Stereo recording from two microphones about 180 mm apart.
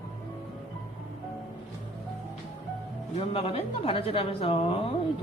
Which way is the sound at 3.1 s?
30° left (ahead or behind).